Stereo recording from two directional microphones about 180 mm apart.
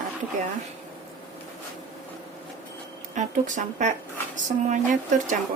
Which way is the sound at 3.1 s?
45° right (ahead or behind).